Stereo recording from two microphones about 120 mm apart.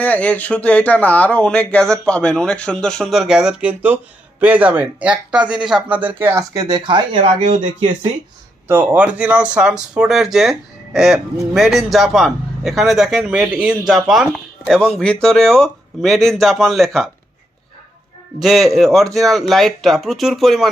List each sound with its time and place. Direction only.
0.0 s speech: 10° left (ahead or behind); by 6.4 s 15° right (ahead or behind)
6.5 s speech: 35° right (ahead or behind)
8.6 s speech: 15° right (ahead or behind); by 17.1 s centre (ahead or behind)
18.3 s speech: centre (ahead or behind)